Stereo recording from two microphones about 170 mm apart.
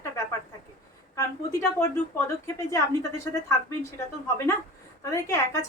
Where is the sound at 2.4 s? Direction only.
15° left (ahead or behind).